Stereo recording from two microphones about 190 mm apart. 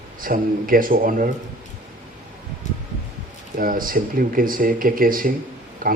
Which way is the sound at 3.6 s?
50° right (ahead or behind).